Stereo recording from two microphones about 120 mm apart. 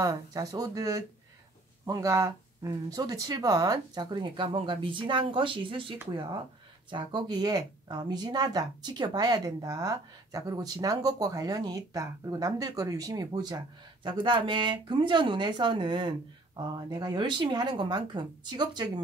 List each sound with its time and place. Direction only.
0.0 s speech: 30° right (ahead or behind)